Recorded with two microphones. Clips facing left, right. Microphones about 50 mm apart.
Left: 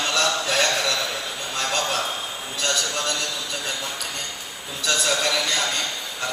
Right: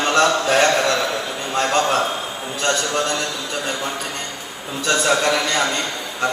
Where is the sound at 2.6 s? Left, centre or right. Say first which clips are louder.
Right 5 dB; right.